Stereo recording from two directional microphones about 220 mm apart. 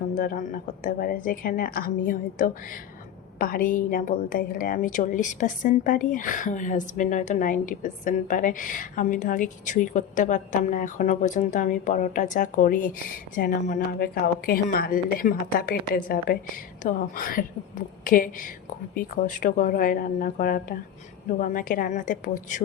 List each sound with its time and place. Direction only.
0.2 s a woman's voice: 40° left (ahead or behind)